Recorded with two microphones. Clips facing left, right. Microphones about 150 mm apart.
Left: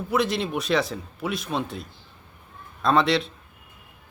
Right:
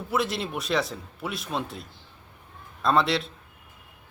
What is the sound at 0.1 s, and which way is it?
A man's voice, centre (ahead or behind).